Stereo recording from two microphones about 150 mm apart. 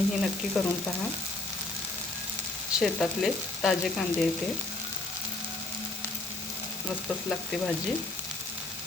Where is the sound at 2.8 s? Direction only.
Centre (ahead or behind).